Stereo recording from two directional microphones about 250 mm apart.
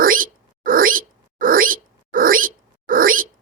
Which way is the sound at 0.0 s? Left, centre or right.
Right.